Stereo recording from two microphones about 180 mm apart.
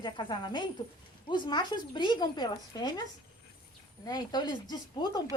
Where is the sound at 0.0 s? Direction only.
25° left (ahead or behind).